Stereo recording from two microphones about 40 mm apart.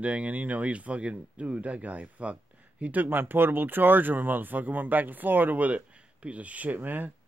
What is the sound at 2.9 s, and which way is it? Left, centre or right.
Speech, right.